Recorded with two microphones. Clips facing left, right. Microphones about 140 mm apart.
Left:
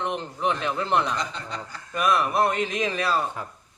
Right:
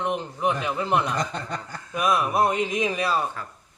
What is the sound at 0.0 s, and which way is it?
A man's voice, 5° right (ahead or behind).